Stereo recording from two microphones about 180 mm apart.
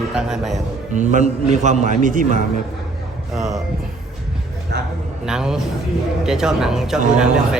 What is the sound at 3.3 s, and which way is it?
Speech, centre (ahead or behind).